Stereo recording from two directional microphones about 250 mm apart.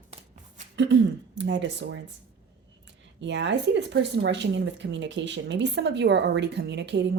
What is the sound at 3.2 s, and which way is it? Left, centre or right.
Speech, right.